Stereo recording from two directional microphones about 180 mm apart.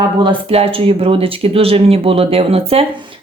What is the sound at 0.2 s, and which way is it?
Speech, 30° right (ahead or behind).